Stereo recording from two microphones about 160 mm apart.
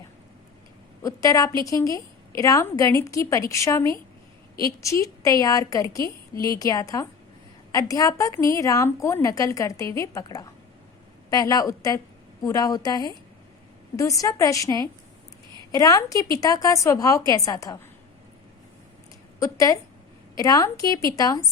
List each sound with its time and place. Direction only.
1.0 s a woman's voice: 20° left (ahead or behind)
19.4 s a woman's voice: 20° left (ahead or behind)